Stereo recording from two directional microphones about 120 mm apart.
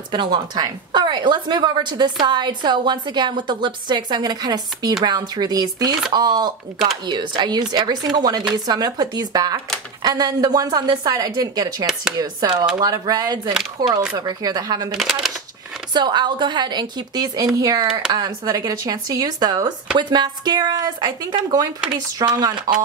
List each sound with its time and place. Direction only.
0.1 s a woman's voice: 40° right (ahead or behind)
11.8 s speech: centre (ahead or behind)
12.2 s a woman's voice: 30° right (ahead or behind)
15.0 s speech: centre (ahead or behind)
15.9 s a woman's voice: 40° right (ahead or behind)